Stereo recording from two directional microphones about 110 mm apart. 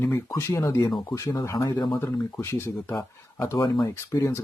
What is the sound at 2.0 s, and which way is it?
Speech, 25° left (ahead or behind).